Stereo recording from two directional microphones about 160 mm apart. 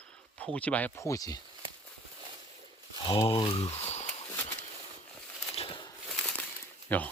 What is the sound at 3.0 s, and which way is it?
Speech, 30° left (ahead or behind).